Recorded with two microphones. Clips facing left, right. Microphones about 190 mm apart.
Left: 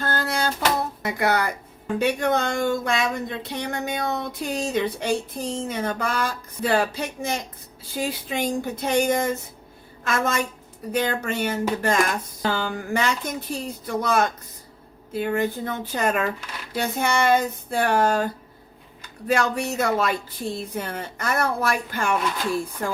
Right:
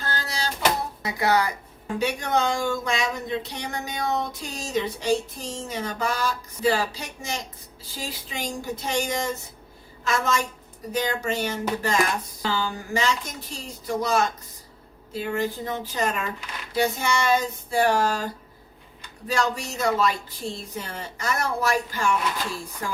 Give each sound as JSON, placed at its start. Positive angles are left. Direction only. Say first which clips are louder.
{"t": 0.0, "sound": "a sound", "louder": "left 6 dB", "side_deg": 55}
{"t": 1.0, "sound": "a woman's voice", "louder": "right 1 dB", "side_deg": 55}
{"t": 19.3, "sound": "speech", "louder": "left 3 dB", "side_deg": 55}